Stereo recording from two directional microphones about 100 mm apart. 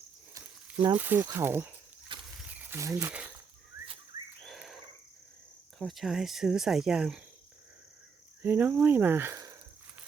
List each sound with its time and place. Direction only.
0.9 s speech: 20° right (ahead or behind)
2.1 s wild animals: 55° right (ahead or behind)
2.5 s a sound: 15° right (ahead or behind)
2.7 s speech: 30° right (ahead or behind)
3.1 s speech: 10° right (ahead or behind)
4.4 s a sound: centre (ahead or behind)
5.8 s speech: centre (ahead or behind)
8.4 s speech: 20° right (ahead or behind)